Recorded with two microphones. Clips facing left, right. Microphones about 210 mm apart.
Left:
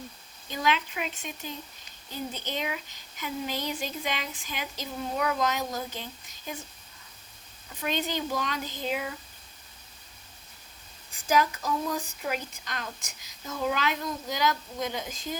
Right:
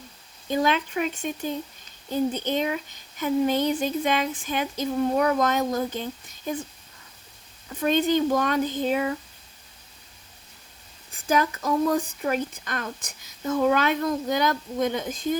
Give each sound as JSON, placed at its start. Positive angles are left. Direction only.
{"t": 0.4, "sound": "a woman's voice", "side_deg": -50}
{"t": 7.8, "sound": "a woman's voice", "side_deg": -45}
{"t": 11.3, "sound": "a woman's voice", "side_deg": -50}